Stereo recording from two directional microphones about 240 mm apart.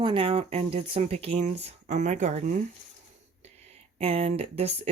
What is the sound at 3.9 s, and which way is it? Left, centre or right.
Speech, right.